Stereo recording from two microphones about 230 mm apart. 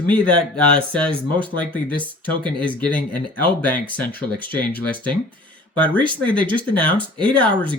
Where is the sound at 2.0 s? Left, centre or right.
Right.